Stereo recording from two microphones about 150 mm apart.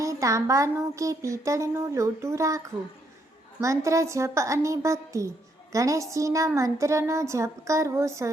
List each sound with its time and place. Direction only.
0.0 s speech: 20° right (ahead or behind)